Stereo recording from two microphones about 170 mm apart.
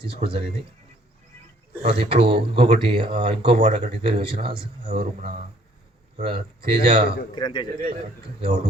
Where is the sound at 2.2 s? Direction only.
35° right (ahead or behind).